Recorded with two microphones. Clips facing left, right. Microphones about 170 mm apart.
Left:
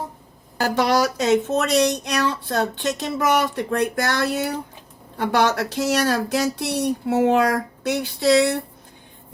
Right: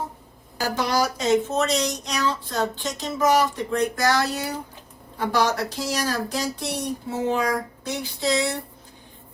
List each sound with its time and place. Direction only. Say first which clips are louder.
0.6 s speech: left 4 dB; 65° left (ahead or behind)